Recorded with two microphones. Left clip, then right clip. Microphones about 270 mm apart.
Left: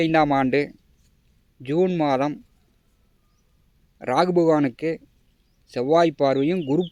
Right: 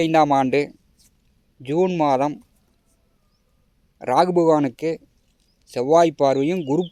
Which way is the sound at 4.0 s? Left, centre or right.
Centre.